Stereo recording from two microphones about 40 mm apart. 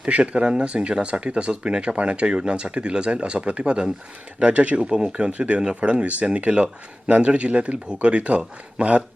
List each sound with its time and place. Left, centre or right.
0.1 s speech: right